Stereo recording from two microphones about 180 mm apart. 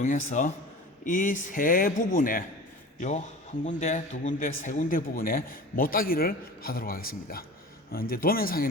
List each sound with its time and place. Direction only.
0.0 s a man's voice: 40° left (ahead or behind)